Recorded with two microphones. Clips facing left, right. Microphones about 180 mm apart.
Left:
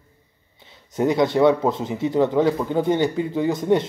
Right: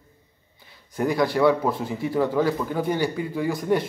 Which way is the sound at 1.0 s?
20° left (ahead or behind).